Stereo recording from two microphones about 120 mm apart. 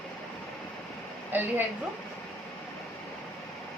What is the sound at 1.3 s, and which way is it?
Speech, 15° right (ahead or behind).